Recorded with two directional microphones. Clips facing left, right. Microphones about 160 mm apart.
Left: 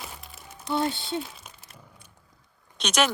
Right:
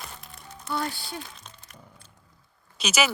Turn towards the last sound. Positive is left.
turn(degrees=-5)  # may be behind; listen again after turning